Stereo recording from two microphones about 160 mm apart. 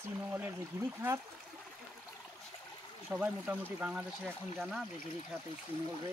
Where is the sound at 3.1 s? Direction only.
10° right (ahead or behind).